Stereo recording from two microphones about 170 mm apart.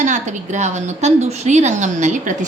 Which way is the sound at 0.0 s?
45° right (ahead or behind).